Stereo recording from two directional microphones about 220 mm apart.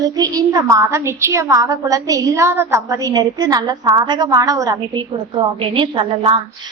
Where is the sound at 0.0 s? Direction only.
15° right (ahead or behind).